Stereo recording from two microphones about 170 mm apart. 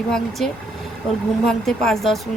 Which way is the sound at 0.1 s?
5° left (ahead or behind).